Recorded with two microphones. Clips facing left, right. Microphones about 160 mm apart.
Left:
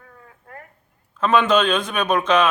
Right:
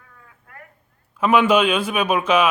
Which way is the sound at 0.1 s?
35° left (ahead or behind).